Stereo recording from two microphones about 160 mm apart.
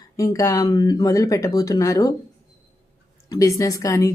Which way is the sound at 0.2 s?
20° left (ahead or behind).